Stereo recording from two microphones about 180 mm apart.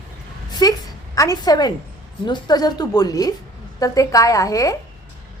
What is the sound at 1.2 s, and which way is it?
A woman's voice, 20° left (ahead or behind).